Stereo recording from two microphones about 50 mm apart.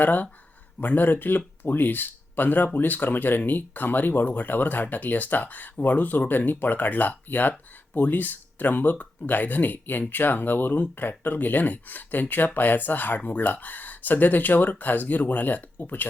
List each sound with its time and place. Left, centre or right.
0.0 s speech: left